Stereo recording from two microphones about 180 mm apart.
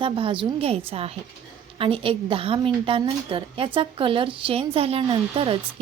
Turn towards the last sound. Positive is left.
turn(degrees=-30)  # may be behind; listen again after turning